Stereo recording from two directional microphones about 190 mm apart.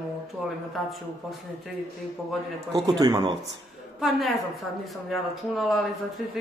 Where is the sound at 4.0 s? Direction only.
Centre (ahead or behind).